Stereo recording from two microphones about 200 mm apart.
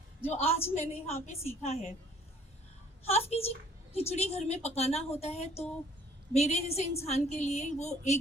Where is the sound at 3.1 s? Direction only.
30° left (ahead or behind).